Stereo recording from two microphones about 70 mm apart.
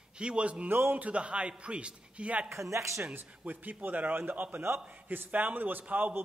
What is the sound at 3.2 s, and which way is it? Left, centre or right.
A man's voice, right.